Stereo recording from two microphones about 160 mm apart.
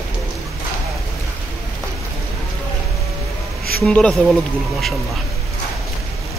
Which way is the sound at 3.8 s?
5° left (ahead or behind).